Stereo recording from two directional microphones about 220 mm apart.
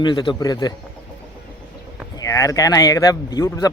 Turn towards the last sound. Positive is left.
turn(degrees=15)  # may be behind; listen again after turning